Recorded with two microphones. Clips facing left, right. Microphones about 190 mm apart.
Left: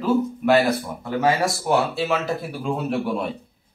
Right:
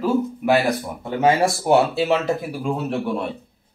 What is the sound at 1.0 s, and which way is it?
Speech, 25° right (ahead or behind).